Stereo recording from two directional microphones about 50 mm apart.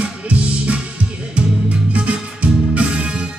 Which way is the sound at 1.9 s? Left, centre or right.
Right.